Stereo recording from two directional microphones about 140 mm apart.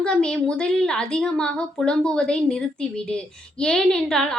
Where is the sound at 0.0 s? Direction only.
5° left (ahead or behind).